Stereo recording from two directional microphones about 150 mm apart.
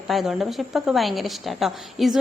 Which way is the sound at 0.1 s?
Centre (ahead or behind).